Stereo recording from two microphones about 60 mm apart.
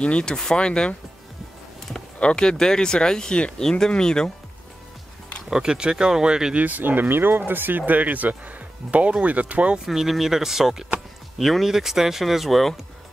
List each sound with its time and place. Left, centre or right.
0.0 s speech: centre
2.1 s speech: centre
5.5 s speech: centre
6.6 s speech: right
9.8 s speech: centre